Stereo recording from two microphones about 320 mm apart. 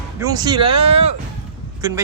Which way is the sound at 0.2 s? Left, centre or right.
Centre.